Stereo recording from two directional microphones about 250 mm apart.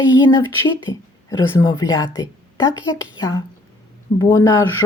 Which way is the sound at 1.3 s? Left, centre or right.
Centre.